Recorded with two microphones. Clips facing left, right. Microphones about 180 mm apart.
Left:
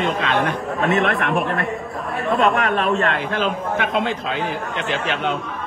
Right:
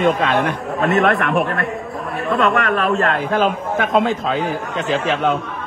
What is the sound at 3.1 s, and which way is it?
A man's voice, 50° right (ahead or behind).